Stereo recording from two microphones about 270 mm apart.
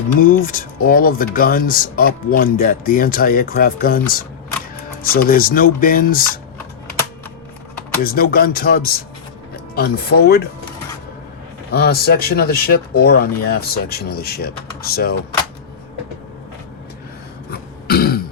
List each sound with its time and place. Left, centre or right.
0.4 s speech: left
8.0 s speech: left
11.7 s speech: left
17.5 s throat clearing: left